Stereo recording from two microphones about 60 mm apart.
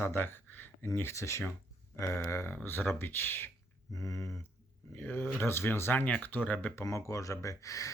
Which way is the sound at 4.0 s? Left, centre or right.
Left.